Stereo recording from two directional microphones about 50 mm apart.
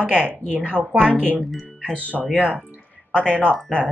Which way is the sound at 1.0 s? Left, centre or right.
Centre.